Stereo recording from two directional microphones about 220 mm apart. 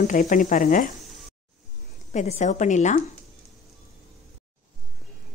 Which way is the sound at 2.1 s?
35° left (ahead or behind).